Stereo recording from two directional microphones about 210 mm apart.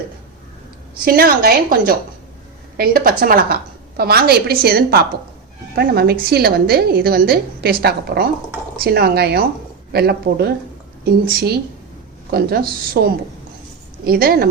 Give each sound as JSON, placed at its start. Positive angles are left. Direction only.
{"t": 1.0, "sound": "a woman's voice", "side_deg": -45}
{"t": 14.0, "sound": "a woman's voice", "side_deg": -45}